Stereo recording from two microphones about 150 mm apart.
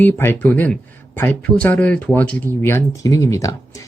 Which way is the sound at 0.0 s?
15° left (ahead or behind).